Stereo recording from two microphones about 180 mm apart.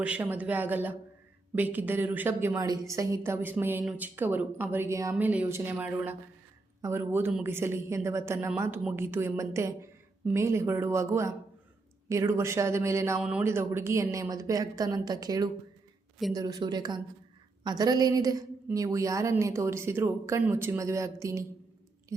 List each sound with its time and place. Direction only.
0.0 s a woman's voice: 10° right (ahead or behind)
13.1 s speech: 5° right (ahead or behind)
13.4 s a woman's voice: 15° right (ahead or behind)